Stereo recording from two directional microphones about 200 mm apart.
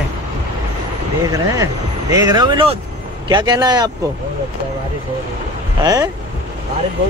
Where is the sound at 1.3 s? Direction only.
15° right (ahead or behind).